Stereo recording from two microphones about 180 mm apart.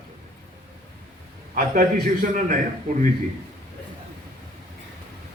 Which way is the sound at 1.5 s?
55° right (ahead or behind).